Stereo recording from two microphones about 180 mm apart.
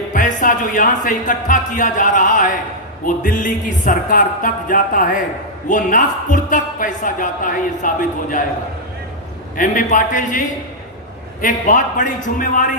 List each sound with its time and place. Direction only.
0.1 s speech: 45° left (ahead or behind)
9.6 s speech: 45° left (ahead or behind)